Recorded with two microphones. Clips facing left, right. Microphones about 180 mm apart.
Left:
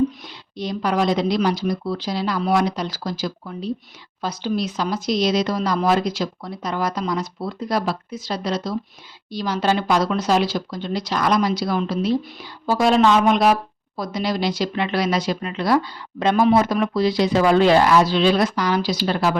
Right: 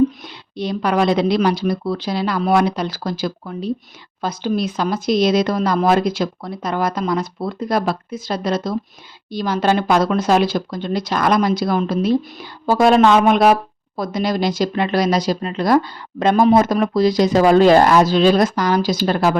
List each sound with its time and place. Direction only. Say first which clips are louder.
0.5 s speech: right 3 dB; 60° right (ahead or behind)